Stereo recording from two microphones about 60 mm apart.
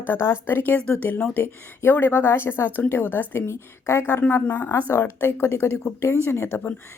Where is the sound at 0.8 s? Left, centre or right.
Centre.